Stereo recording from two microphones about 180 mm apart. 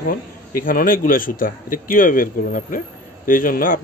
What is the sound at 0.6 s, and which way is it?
Speech, 50° left (ahead or behind).